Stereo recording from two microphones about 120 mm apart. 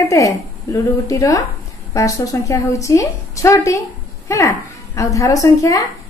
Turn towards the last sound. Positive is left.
turn(degrees=25)  # may be behind; listen again after turning